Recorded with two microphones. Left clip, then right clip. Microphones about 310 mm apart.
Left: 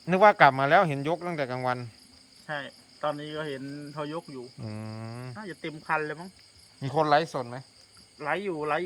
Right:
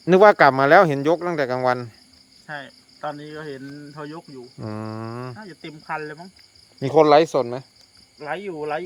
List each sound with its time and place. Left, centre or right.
0.0 s speech: right
2.5 s speech: centre
4.6 s mantra: centre
5.4 s speech: centre
7.0 s speech: centre
8.2 s speech: centre